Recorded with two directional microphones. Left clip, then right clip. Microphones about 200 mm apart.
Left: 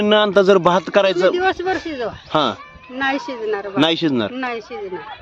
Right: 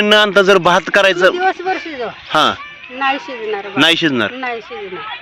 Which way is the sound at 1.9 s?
5° left (ahead or behind).